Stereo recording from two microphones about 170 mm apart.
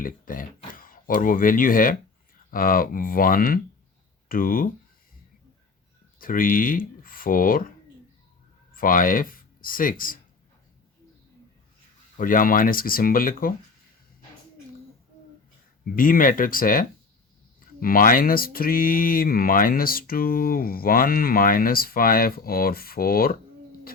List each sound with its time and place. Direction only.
0.0 s speech: 55° left (ahead or behind)
6.1 s speech: 55° left (ahead or behind)
8.7 s speech: 55° left (ahead or behind)
12.1 s speech: 50° left (ahead or behind)
16.0 s speech: 55° left (ahead or behind)